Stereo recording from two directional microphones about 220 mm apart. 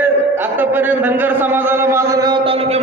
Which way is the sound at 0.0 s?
10° right (ahead or behind).